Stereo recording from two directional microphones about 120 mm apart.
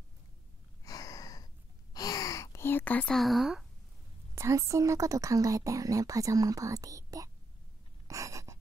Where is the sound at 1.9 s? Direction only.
30° left (ahead or behind); by 3.1 s 15° left (ahead or behind).